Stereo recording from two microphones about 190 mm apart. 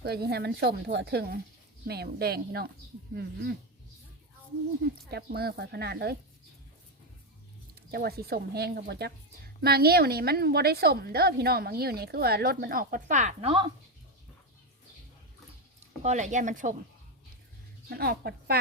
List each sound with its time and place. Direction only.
0.0 s a woman's voice: 55° right (ahead or behind)
4.8 s a woman's voice: 55° right (ahead or behind)
7.8 s a woman's voice: 55° right (ahead or behind); by 13.7 s 30° right (ahead or behind)
16.0 s speech: 40° right (ahead or behind)
17.8 s speech: 55° right (ahead or behind)